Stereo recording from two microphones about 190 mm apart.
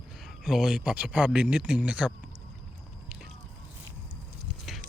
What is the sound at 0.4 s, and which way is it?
Speech, centre (ahead or behind).